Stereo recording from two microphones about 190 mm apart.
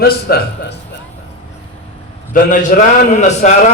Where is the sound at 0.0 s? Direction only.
55° left (ahead or behind).